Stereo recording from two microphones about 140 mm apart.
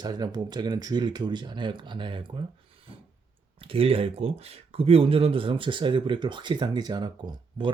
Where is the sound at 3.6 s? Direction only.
40° right (ahead or behind).